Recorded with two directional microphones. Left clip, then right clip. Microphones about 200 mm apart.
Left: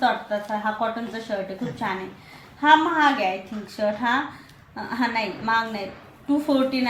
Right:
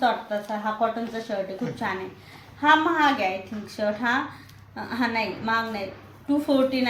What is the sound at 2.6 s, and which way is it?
A woman's voice, centre (ahead or behind).